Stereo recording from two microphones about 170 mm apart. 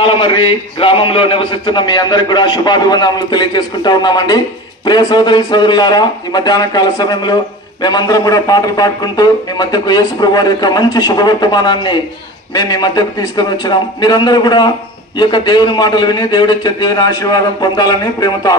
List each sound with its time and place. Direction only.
0.0 s a man's voice: 30° left (ahead or behind)